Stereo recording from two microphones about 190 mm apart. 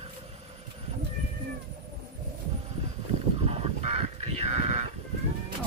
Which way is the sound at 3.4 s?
35° right (ahead or behind).